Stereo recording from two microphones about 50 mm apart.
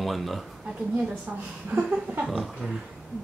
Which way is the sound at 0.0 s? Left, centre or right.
Centre.